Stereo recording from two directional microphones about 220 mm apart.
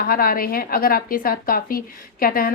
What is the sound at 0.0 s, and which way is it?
A woman's voice, 40° left (ahead or behind).